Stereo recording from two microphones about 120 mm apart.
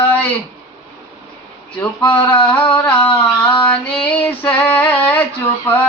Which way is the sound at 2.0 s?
15° left (ahead or behind).